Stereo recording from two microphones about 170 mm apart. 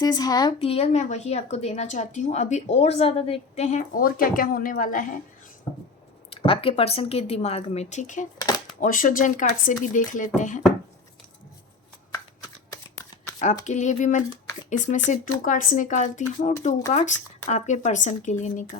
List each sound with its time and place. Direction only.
0.0 s speech: 20° left (ahead or behind)
0.6 s a woman's voice: 35° left (ahead or behind)
6.3 s a woman's voice: 35° left (ahead or behind)
8.4 s a sound: 25° left (ahead or behind)
8.8 s speech: 50° left (ahead or behind)
13.7 s speech: 45° left (ahead or behind)